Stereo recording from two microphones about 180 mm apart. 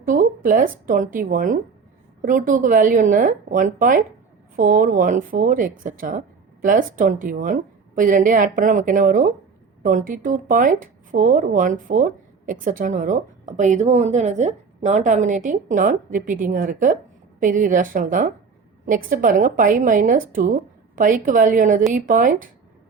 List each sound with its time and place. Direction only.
0.0 s a woman's voice: 50° right (ahead or behind)